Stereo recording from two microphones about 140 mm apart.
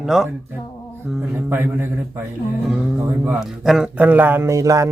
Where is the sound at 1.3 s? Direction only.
15° right (ahead or behind).